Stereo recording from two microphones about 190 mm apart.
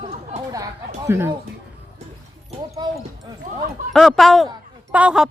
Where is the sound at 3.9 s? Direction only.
Centre (ahead or behind).